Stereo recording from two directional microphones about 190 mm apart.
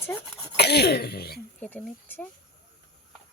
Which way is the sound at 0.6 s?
60° left (ahead or behind).